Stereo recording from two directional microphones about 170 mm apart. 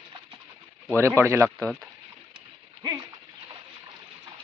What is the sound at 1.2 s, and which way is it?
Speech, 15° right (ahead or behind).